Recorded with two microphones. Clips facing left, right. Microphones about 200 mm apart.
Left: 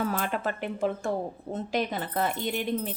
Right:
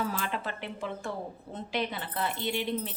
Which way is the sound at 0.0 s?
55° left (ahead or behind).